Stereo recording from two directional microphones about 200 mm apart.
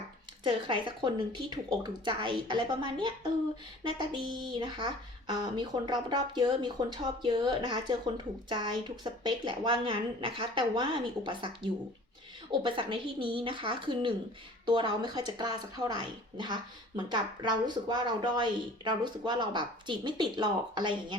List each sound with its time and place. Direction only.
0.4 s speech: 25° right (ahead or behind)